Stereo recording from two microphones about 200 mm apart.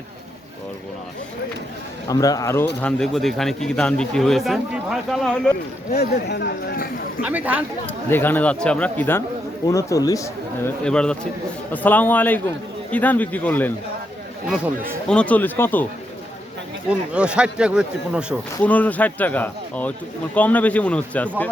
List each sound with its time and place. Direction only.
2.0 s speech: 15° left (ahead or behind)
2.8 s a man's voice: centre (ahead or behind)
5.9 s speech: 55° left (ahead or behind)
7.2 s speech: 10° right (ahead or behind)
8.1 s speech: 10° left (ahead or behind)
10.8 s a man's voice: 5° left (ahead or behind)
14.4 s a man's voice: 5° right (ahead or behind)
15.0 s speech: 5° left (ahead or behind)
17.2 s a man's voice: 5° right (ahead or behind)
18.6 s speech: 5° left (ahead or behind)